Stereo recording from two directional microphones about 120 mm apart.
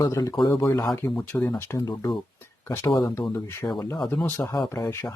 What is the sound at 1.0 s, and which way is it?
Speech, 10° left (ahead or behind).